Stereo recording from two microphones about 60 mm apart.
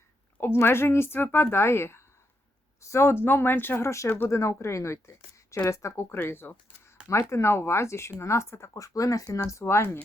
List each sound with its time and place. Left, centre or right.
0.3 s speech: left
3.8 s a woman's voice: left
6.1 s speech: left
7.1 s a woman's voice: left
9.0 s speech: left